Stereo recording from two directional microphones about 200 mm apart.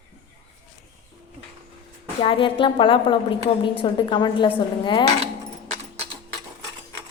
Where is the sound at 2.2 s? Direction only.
25° left (ahead or behind).